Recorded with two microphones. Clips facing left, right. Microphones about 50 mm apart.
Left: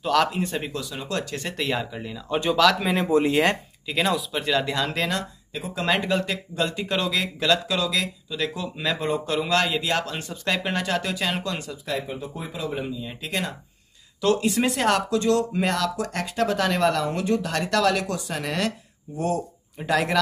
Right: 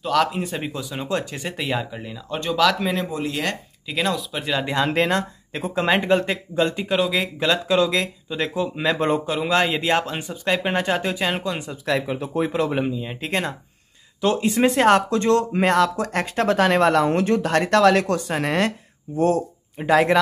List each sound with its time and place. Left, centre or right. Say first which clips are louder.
0.0 s speech: right 1 dB; centre
0.7 s speech: right 3 dB; right
1.4 s speech: right 1 dB; centre
3.1 s speech: left 6 dB; left
3.9 s speech: even; centre
4.6 s speech: right 5 dB; right
6.9 s speech: right 4 dB; centre
7.2 s speech: right 1 dB; centre
9.2 s speech: right 2 dB; centre
11.8 s speech: right 9 dB; right
12.4 s speech: right 6 dB; right
12.9 s speech: right 4 dB; right